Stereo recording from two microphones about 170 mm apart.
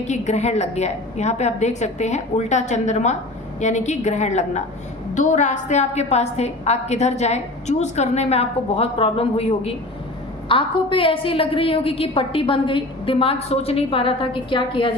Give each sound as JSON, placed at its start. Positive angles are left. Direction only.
{"t": 0.0, "sound": "a woman's voice", "side_deg": 40}